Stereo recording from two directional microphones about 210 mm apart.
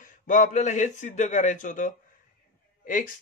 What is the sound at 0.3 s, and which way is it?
Speech, 35° left (ahead or behind).